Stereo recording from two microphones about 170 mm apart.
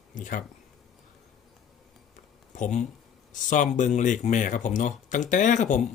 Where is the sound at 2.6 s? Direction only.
45° left (ahead or behind).